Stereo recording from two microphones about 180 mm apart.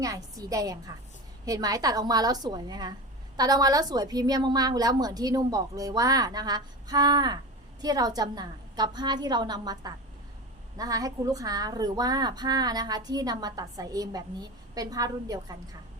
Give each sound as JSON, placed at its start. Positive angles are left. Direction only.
{"t": 0.0, "sound": "a woman's voice", "side_deg": -20}